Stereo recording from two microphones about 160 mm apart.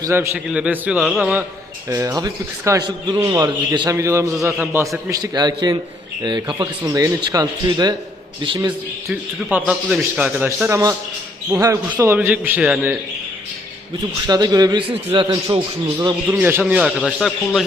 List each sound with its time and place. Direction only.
0.0 s a man's voice: 20° right (ahead or behind)
0.3 s a man's voice: 5° right (ahead or behind)
1.9 s a man's voice: 20° right (ahead or behind)
5.1 s a man's voice: 25° right (ahead or behind)
9.5 s a man's voice: 10° right (ahead or behind)
14.3 s a man's voice: 25° right (ahead or behind); by 17.3 s 5° right (ahead or behind)